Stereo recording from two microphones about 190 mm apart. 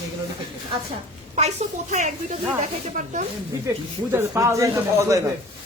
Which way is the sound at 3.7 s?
15° right (ahead or behind).